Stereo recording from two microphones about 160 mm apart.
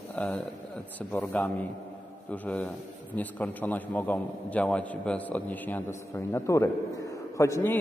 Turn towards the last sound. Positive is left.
turn(degrees=15)  # may be behind; listen again after turning